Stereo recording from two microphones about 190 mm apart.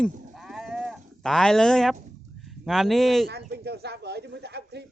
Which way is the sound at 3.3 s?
60° right (ahead or behind).